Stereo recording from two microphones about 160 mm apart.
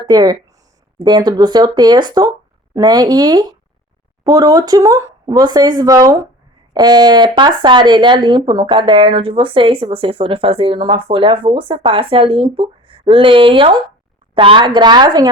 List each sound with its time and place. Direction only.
0.1 s speech: 25° right (ahead or behind)